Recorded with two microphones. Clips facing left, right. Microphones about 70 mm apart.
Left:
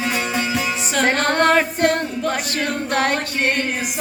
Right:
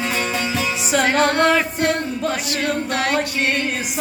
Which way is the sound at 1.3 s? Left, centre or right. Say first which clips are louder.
Left 1 dB; left.